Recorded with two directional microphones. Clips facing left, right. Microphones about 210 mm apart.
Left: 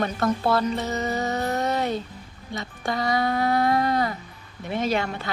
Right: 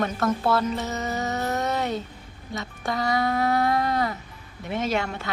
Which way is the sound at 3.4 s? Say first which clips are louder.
Left 2 dB; 25° left (ahead or behind).